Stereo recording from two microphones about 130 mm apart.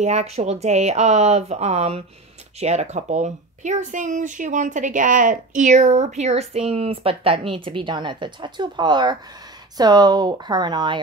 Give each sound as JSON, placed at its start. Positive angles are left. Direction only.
{"t": 0.0, "sound": "speech", "side_deg": -60}